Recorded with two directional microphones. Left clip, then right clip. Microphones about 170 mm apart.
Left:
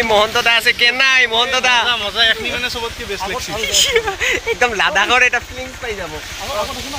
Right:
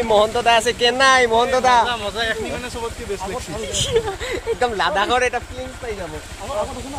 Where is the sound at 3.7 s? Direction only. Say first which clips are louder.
Left 6 dB; 5° left (ahead or behind).